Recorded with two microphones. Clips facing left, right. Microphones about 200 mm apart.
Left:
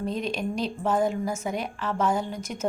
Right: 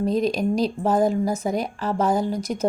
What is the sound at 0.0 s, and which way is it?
Speech, 40° right (ahead or behind).